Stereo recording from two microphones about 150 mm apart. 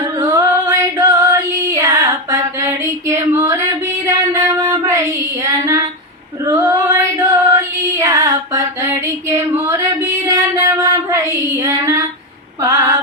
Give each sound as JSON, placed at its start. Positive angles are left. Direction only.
{"t": 0.2, "sound": "female singing", "side_deg": -20}
{"t": 9.6, "sound": "child singing", "side_deg": -15}
{"t": 12.6, "sound": "a sound", "side_deg": -20}